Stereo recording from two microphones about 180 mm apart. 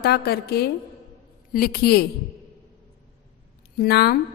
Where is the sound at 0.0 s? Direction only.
60° left (ahead or behind).